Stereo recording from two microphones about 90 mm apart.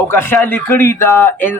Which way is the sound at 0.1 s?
25° left (ahead or behind).